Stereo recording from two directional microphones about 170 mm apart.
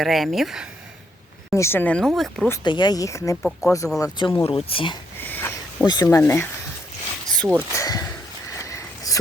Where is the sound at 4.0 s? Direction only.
25° left (ahead or behind).